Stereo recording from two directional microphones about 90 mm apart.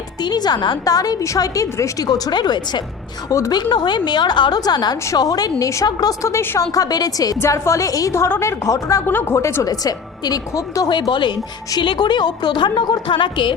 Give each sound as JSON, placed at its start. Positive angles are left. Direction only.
{"t": 0.2, "sound": "a woman's voice", "side_deg": 50}
{"t": 3.2, "sound": "a woman's voice", "side_deg": 35}
{"t": 3.5, "sound": "a woman's voice", "side_deg": 50}
{"t": 6.2, "sound": "a woman's voice", "side_deg": 30}
{"t": 6.7, "sound": "a woman's voice", "side_deg": 45}
{"t": 7.3, "sound": "a woman's voice", "side_deg": 30}
{"t": 9.0, "sound": "a woman's voice", "side_deg": 25}
{"t": 9.6, "sound": "a woman's voice", "side_deg": 45}
{"t": 10.9, "sound": "a woman's voice", "side_deg": 60}